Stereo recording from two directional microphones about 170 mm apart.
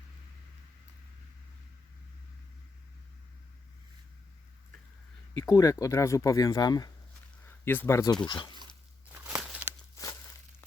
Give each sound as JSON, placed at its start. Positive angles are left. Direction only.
{"t": 5.4, "sound": "speech", "side_deg": 20}
{"t": 7.4, "sound": "speech", "side_deg": 10}
{"t": 8.2, "sound": "speech", "side_deg": 25}
{"t": 9.1, "sound": "crumpling", "side_deg": -5}
{"t": 9.9, "sound": "a sound", "side_deg": 20}